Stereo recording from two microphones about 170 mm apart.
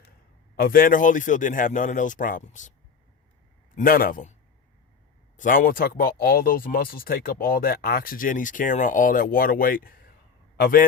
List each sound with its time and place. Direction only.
0.5 s speech: 60° left (ahead or behind)
3.8 s speech: 60° left (ahead or behind)
5.4 s speech: 55° left (ahead or behind)